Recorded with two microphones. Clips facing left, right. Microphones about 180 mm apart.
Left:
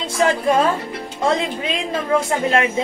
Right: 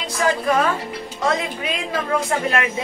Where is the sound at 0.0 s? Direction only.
25° left (ahead or behind).